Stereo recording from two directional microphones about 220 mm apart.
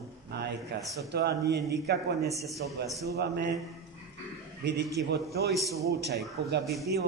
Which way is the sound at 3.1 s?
50° right (ahead or behind).